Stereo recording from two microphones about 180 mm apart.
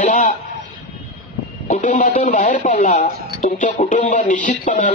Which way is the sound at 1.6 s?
45° left (ahead or behind).